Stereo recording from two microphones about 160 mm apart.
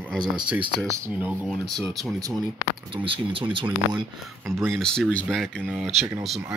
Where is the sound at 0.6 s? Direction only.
25° right (ahead or behind).